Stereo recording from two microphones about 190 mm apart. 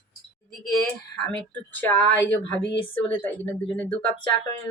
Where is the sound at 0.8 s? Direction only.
5° left (ahead or behind).